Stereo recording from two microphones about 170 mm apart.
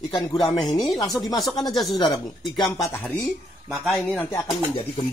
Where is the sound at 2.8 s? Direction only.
15° left (ahead or behind).